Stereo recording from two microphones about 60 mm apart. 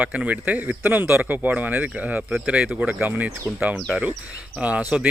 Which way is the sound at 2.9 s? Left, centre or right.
Right.